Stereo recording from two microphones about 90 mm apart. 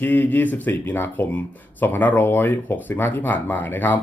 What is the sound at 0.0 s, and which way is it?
Speech, 20° left (ahead or behind).